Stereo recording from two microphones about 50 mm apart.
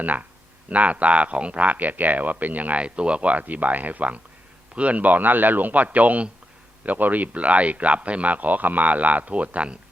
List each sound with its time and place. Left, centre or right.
0.0 s speech: right